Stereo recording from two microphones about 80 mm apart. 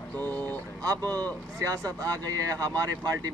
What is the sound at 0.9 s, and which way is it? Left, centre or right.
Speech, right.